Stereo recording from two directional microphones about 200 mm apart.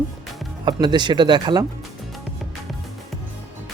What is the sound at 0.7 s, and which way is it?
Speech, 20° right (ahead or behind).